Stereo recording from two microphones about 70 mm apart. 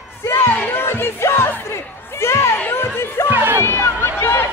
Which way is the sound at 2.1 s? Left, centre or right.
Left.